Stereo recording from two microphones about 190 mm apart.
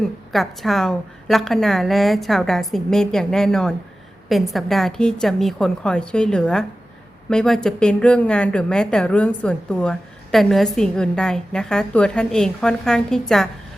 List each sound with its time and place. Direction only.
0.0 s a woman's voice: centre (ahead or behind)